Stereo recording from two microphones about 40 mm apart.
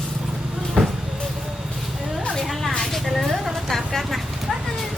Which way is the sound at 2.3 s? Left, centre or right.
Centre.